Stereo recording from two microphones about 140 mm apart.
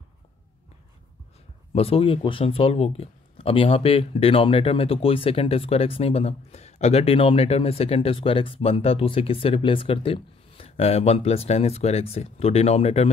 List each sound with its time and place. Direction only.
1.7 s speech: 45° left (ahead or behind)